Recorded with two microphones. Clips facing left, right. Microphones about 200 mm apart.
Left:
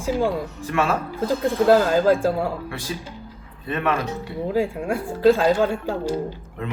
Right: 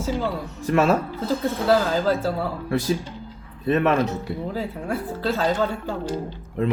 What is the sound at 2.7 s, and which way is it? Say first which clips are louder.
Speech: right 8 dB; 40° right (ahead or behind).